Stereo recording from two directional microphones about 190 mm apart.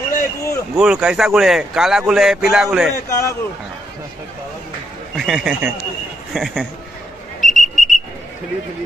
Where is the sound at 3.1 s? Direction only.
15° left (ahead or behind).